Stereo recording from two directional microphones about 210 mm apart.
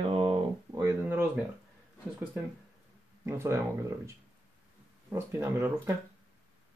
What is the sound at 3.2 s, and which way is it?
Speech, 10° right (ahead or behind).